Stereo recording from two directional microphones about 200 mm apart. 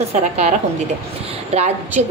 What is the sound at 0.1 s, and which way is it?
Speech, 35° right (ahead or behind).